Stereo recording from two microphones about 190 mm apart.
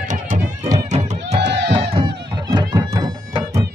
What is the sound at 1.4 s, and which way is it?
Music, 65° right (ahead or behind).